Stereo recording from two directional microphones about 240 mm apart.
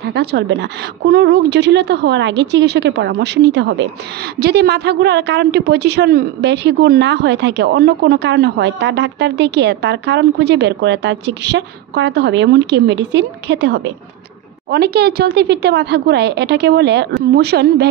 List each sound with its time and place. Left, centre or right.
0.0 s a woman's voice: right